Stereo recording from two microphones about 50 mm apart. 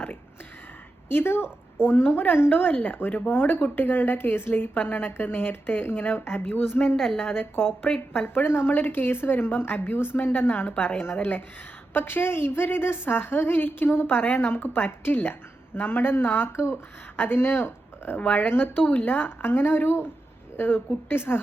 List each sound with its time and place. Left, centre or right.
1.0 s a woman's voice: left
17.2 s speech: left
18.2 s a woman's voice: left